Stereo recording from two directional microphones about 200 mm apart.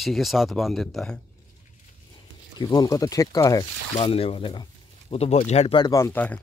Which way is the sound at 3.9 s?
30° left (ahead or behind).